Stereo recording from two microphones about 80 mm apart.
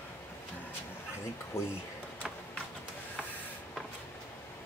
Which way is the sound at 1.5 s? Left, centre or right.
Left.